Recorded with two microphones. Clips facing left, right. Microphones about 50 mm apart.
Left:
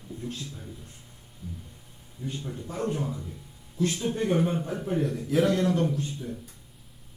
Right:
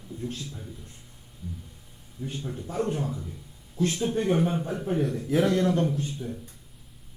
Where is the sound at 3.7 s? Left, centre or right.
Right.